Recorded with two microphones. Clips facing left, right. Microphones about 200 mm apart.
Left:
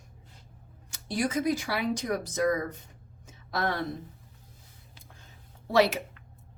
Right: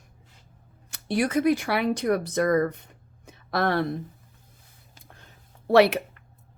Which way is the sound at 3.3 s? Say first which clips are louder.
Right 5 dB; 65° right (ahead or behind).